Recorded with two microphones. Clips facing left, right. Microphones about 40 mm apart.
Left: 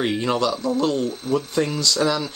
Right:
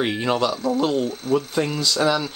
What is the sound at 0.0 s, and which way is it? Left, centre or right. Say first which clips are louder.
Speech: even; centre.